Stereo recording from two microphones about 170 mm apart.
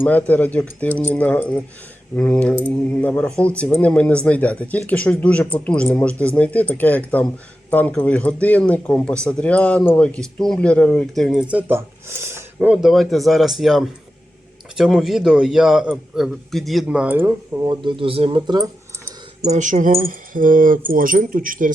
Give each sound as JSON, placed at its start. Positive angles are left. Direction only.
{"t": 0.0, "sound": "speech", "side_deg": 10}
{"t": 17.7, "sound": "speech", "side_deg": -30}
{"t": 19.5, "sound": "speech", "side_deg": -45}